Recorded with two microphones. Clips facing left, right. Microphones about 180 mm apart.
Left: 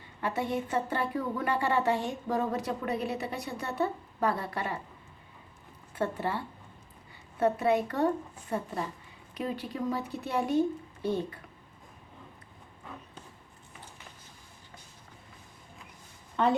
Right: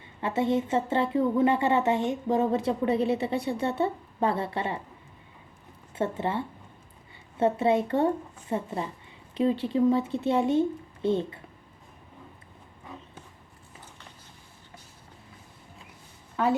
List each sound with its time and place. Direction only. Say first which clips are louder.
0.2 s speech: right 6 dB; 25° right (ahead or behind)
5.9 s speech: right 3 dB; 25° right (ahead or behind)
16.4 s a woman's voice: right 1 dB; 5° right (ahead or behind)